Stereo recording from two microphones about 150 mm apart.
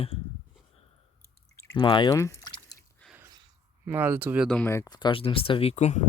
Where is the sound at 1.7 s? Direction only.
30° left (ahead or behind).